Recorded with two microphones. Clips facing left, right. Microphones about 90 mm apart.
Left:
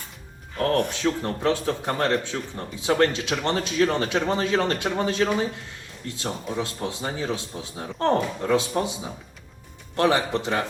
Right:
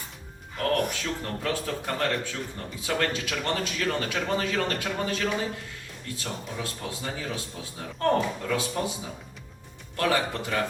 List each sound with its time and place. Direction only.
0.6 s speech: 25° left (ahead or behind)
9.9 s speech: 25° left (ahead or behind)